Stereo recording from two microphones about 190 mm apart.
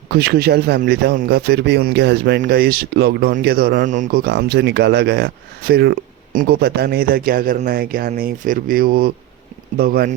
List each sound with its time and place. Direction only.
0.1 s speech: 55° right (ahead or behind)